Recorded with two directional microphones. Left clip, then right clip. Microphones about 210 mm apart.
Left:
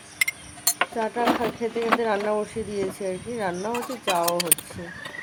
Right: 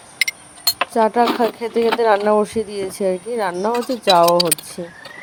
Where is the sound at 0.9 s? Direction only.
40° right (ahead or behind).